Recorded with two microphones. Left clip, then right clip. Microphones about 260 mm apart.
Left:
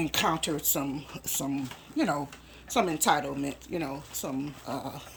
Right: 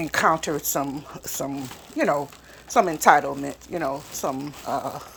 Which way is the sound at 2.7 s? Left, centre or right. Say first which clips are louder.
Right 9 dB; centre.